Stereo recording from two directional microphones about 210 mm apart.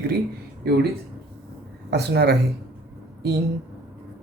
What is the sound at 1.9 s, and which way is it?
Speech, 50° right (ahead or behind).